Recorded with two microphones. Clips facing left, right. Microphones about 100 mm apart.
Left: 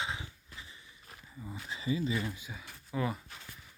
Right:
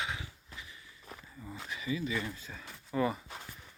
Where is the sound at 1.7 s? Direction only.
25° left (ahead or behind).